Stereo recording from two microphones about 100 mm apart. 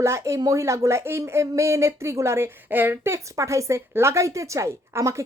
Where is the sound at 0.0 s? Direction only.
30° right (ahead or behind).